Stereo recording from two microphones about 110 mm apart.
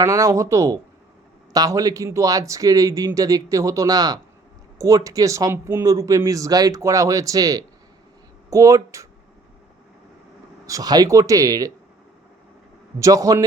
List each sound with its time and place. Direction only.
0.0 s speech: 30° right (ahead or behind)
10.7 s speech: 35° right (ahead or behind)
13.0 s speech: 30° right (ahead or behind)